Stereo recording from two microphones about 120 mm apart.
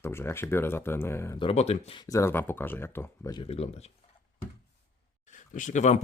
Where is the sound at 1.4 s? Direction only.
55° left (ahead or behind).